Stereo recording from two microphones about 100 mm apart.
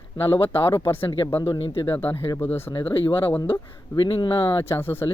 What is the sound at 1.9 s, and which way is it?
Speech, 25° left (ahead or behind).